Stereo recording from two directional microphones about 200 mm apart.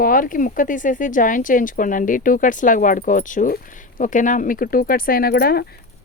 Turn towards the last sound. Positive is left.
turn(degrees=50)  # may be behind; listen again after turning